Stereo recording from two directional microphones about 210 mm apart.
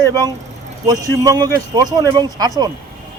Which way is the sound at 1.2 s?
15° right (ahead or behind).